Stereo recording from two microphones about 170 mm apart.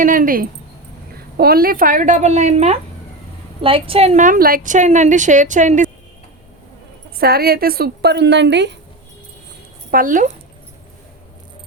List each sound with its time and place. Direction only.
0.0 s a woman's voice: 55° right (ahead or behind)
7.2 s a woman's voice: 65° right (ahead or behind); by 8.7 s 90° right
9.9 s a woman's voice: 55° right (ahead or behind)